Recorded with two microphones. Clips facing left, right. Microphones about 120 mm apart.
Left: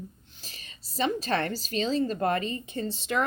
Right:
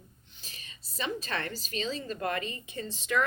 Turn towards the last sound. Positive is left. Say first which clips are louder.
# left 2 dB
turn(degrees=30)  # may be behind; listen again after turning